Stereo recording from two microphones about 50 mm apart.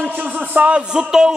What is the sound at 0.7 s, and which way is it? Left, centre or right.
Music, right.